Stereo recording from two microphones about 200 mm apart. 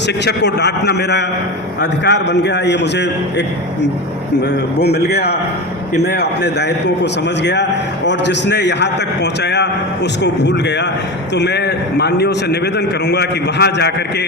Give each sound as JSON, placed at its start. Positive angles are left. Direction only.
{"t": 0.3, "sound": "a man's voice", "side_deg": 55}
{"t": 4.8, "sound": "a man's voice", "side_deg": 55}